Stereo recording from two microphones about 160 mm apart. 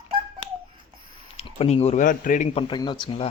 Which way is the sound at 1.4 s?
40° left (ahead or behind).